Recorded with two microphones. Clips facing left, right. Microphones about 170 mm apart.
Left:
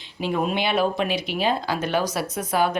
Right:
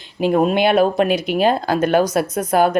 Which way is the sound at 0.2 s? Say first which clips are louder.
Right 8 dB; 45° right (ahead or behind).